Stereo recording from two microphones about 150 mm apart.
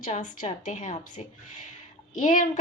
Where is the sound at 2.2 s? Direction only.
55° left (ahead or behind).